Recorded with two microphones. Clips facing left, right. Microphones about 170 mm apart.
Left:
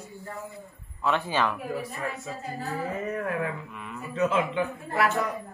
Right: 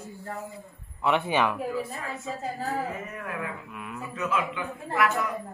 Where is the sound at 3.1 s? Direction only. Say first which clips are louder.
Left 6 dB; 35° left (ahead or behind).